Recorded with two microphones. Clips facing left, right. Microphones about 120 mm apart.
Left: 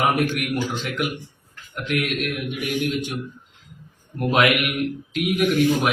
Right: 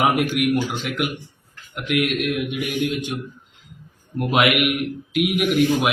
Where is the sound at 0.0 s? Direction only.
15° right (ahead or behind).